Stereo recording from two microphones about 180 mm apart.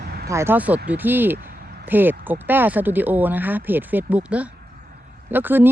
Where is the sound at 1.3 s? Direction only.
65° right (ahead or behind).